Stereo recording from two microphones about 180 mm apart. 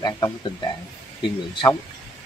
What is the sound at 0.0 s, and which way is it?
Speech, 25° left (ahead or behind).